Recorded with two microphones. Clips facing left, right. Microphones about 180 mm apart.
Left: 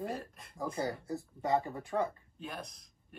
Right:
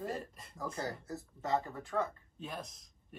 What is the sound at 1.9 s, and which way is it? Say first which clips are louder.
Speech: left 2 dB; 20° left (ahead or behind).